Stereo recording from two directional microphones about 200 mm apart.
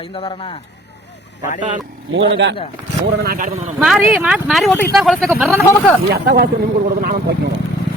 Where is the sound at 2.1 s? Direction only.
65° right (ahead or behind).